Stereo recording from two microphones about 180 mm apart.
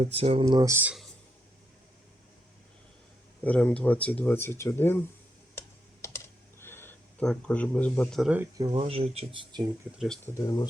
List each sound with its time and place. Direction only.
0.0 s speech: 35° right (ahead or behind)
0.4 s speech: 20° right (ahead or behind)
3.4 s speech: 10° left (ahead or behind)
5.5 s computer keyboard: 15° left (ahead or behind)
8.6 s speech: 30° right (ahead or behind)
10.2 s speech: 20° left (ahead or behind)